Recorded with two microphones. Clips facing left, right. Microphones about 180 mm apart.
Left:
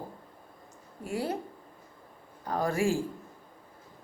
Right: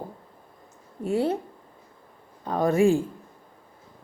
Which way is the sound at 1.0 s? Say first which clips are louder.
Right 8 dB; 25° right (ahead or behind).